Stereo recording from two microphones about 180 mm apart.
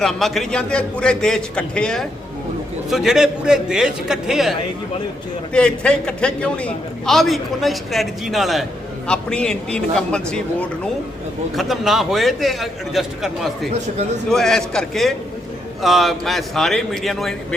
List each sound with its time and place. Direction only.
0.0 s a man's voice: centre (ahead or behind)
5.5 s a man's voice: 5° left (ahead or behind)